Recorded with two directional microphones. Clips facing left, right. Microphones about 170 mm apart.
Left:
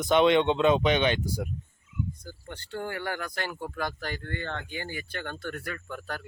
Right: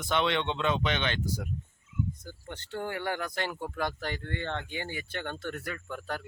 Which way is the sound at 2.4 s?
20° right (ahead or behind).